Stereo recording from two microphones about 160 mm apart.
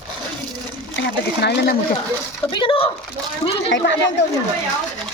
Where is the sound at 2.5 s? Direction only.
30° left (ahead or behind).